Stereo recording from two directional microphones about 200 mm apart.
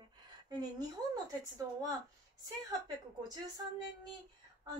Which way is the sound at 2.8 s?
20° right (ahead or behind).